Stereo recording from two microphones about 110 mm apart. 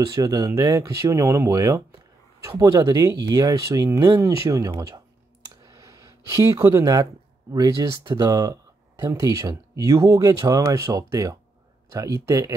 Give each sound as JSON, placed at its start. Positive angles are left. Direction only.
{"t": 0.0, "sound": "speech", "side_deg": -30}
{"t": 5.5, "sound": "a sound", "side_deg": -30}
{"t": 7.5, "sound": "speech", "side_deg": -35}